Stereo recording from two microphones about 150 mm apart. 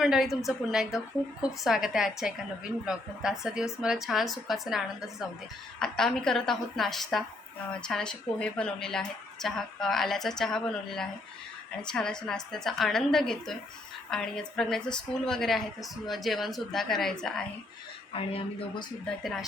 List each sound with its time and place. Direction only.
0.0 s a woman's voice: centre (ahead or behind)
18.1 s speech: 35° left (ahead or behind)
19.2 s a woman's voice: centre (ahead or behind)